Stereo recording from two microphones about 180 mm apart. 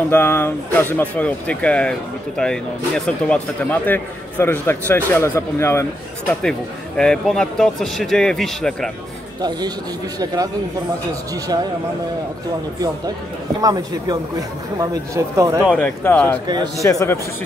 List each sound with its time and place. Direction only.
0.1 s a man's voice: 10° left (ahead or behind)
7.0 s speech: 5° left (ahead or behind)
10.2 s speech: 20° right (ahead or behind)
13.6 s speech: 20° right (ahead or behind)
15.8 s a man's voice: 10° left (ahead or behind)